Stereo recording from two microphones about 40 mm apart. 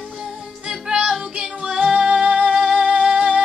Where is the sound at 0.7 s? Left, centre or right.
Centre.